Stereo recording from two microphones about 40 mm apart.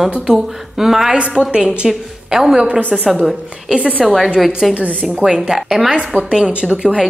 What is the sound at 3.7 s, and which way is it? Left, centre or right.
Speech, right.